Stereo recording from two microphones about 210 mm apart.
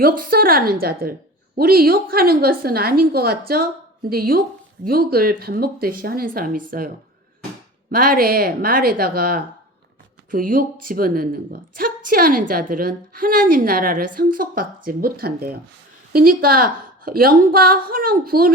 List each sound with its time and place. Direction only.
0.0 s a woman's voice: 45° right (ahead or behind)